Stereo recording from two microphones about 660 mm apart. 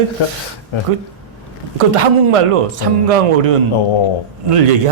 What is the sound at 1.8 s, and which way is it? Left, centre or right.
Speech, right.